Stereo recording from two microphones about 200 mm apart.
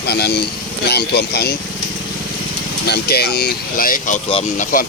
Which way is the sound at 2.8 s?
55° left (ahead or behind).